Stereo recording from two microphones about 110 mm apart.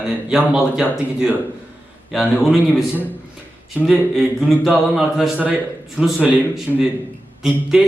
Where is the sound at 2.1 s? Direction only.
Centre (ahead or behind).